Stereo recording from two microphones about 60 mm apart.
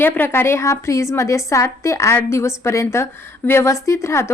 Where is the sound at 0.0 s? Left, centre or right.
Left.